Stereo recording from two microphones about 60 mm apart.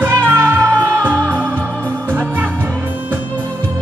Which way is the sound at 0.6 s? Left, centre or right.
Right.